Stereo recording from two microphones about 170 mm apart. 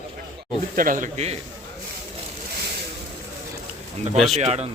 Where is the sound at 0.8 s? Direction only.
50° right (ahead or behind).